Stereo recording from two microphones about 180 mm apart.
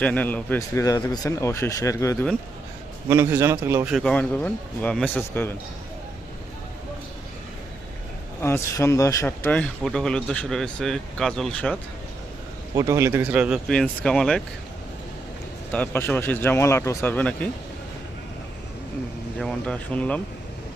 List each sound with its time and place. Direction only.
0.0 s speech: 10° left (ahead or behind)
3.1 s a man's voice: 15° right (ahead or behind)
3.9 s speech: 5° left (ahead or behind)
8.4 s speech: 15° left (ahead or behind)
12.7 s speech: 20° right (ahead or behind); by 14.4 s 5° left (ahead or behind)
15.7 s speech: 10° left (ahead or behind)
19.4 s speech: 5° left (ahead or behind)